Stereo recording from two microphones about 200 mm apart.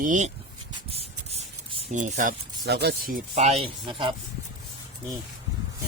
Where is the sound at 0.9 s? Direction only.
30° right (ahead or behind).